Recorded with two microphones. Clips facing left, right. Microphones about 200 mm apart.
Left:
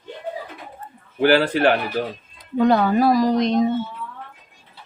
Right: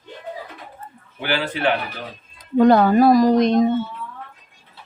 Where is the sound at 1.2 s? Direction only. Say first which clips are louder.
Left 6 dB; 45° left (ahead or behind).